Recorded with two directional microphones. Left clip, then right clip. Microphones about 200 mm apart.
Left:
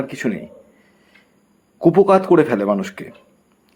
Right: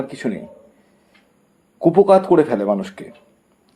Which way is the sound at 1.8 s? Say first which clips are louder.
Right 1 dB; 35° left (ahead or behind).